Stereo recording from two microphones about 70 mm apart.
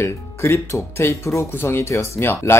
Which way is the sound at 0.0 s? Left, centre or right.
Left.